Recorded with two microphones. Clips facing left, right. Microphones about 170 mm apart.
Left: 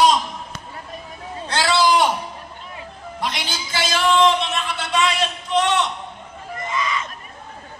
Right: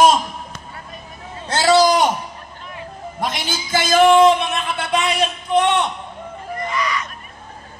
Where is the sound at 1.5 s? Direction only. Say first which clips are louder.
Right 4 dB; 45° right (ahead or behind).